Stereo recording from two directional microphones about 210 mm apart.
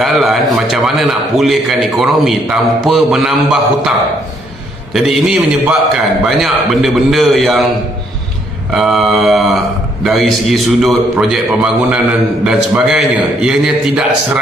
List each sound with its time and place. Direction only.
0.0 s a man's voice: centre (ahead or behind)
4.9 s a man's voice: centre (ahead or behind)
8.7 s a man's voice: centre (ahead or behind)